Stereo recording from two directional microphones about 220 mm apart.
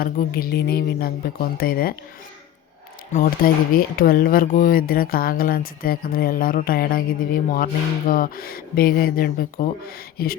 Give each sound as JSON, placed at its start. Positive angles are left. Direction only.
{"t": 0.0, "sound": "speech", "side_deg": 45}
{"t": 3.1, "sound": "speech", "side_deg": 40}